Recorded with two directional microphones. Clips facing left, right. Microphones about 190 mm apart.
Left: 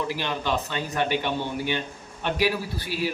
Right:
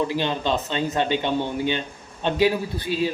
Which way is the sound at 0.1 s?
20° right (ahead or behind).